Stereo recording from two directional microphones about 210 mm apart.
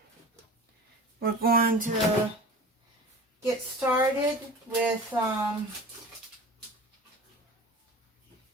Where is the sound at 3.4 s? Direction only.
10° right (ahead or behind).